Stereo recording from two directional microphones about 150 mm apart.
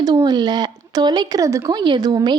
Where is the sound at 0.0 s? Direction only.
25° right (ahead or behind).